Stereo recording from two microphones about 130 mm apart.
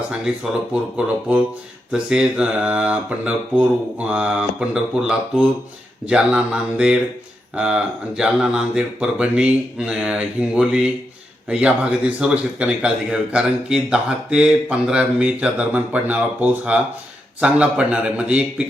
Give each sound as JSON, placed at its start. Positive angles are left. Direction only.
{"t": 0.7, "sound": "speech", "side_deg": -10}